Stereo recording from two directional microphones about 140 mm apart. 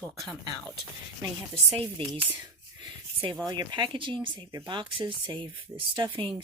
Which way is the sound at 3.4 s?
30° right (ahead or behind).